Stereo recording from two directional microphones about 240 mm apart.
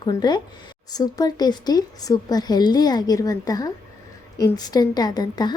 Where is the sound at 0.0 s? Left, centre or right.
Centre.